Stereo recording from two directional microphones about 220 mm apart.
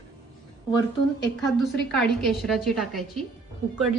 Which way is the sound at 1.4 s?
Centre (ahead or behind).